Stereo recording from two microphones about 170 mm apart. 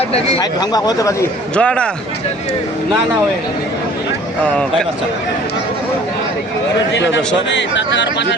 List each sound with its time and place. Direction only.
0.6 s speech: 25° left (ahead or behind)
1.5 s speech: 5° left (ahead or behind)
4.4 s speech: 5° left (ahead or behind)
7.3 s speech: 90° left